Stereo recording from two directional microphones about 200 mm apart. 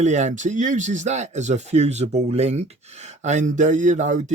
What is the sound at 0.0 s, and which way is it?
A man's voice, 35° right (ahead or behind).